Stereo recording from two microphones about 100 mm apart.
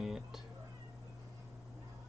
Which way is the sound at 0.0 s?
5° right (ahead or behind).